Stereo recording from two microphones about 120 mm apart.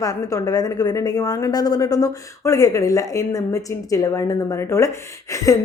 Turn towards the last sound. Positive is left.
turn(degrees=30)  # may be behind; listen again after turning